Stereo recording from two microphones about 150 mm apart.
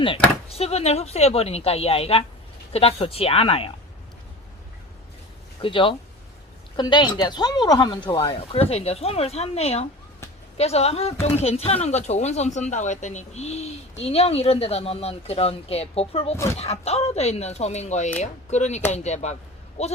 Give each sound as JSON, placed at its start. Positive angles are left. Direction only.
{"t": 0.0, "sound": "speech", "side_deg": 40}
{"t": 5.5, "sound": "speech", "side_deg": 35}